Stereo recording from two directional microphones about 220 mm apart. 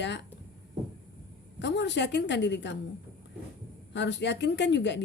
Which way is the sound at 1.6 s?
50° left (ahead or behind).